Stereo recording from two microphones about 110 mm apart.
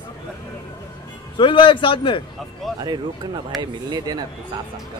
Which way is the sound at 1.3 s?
50° left (ahead or behind).